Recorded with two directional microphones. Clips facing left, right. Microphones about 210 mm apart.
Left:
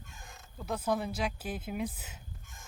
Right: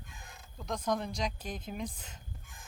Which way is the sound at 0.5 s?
5° left (ahead or behind).